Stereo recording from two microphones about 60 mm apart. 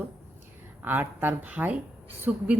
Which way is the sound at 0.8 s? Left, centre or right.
Right.